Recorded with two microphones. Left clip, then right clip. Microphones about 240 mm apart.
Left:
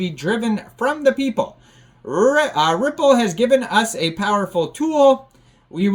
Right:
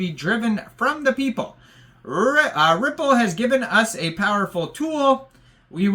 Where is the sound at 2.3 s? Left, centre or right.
Centre.